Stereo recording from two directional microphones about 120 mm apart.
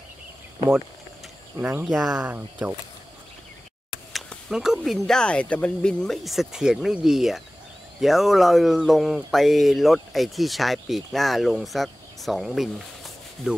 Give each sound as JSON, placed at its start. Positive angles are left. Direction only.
{"t": 1.9, "sound": "speech", "side_deg": 0}
{"t": 2.2, "sound": "speech", "side_deg": -20}
{"t": 4.1, "sound": "speech", "side_deg": 0}